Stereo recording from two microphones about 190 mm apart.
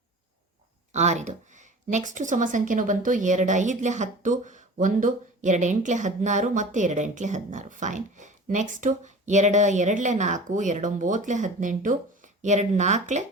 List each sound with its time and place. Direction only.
0.9 s speech: 35° right (ahead or behind)